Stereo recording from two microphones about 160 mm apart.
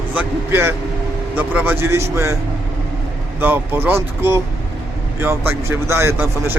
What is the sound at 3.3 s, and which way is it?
Speech, 10° right (ahead or behind).